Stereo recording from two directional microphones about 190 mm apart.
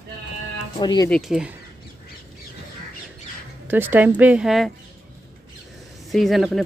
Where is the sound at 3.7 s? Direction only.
10° right (ahead or behind).